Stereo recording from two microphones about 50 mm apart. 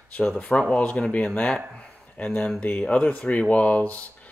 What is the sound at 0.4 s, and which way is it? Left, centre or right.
Speech, left.